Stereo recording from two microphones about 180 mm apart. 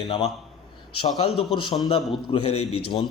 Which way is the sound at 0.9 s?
30° left (ahead or behind).